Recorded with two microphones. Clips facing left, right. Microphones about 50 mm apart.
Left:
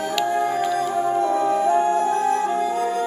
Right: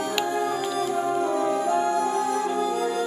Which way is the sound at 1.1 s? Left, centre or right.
Left.